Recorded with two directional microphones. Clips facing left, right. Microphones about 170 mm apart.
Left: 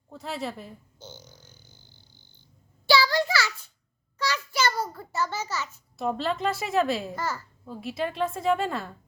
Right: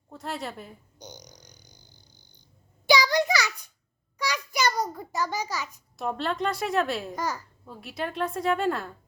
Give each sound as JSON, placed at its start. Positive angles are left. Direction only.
{"t": 0.1, "sound": "a woman's voice", "side_deg": 0}
{"t": 0.9, "sound": "frog", "side_deg": -15}
{"t": 2.8, "sound": "a sound", "side_deg": -15}
{"t": 6.0, "sound": "a woman's voice", "side_deg": 0}
{"t": 7.2, "sound": "a child's voice", "side_deg": -15}
{"t": 7.7, "sound": "a woman's voice", "side_deg": 0}